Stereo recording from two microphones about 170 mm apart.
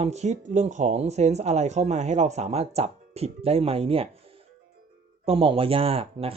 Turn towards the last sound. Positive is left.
turn(degrees=-35)  # may be behind; listen again after turning